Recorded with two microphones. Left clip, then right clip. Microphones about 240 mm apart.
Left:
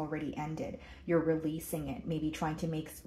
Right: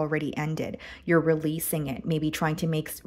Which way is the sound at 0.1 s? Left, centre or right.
Right.